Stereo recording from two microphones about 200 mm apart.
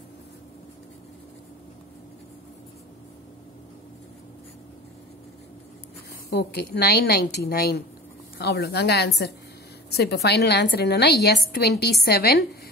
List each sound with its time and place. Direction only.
6.3 s a woman's voice: 55° left (ahead or behind)